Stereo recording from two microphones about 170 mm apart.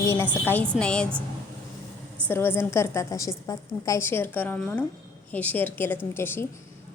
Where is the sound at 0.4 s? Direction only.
10° left (ahead or behind).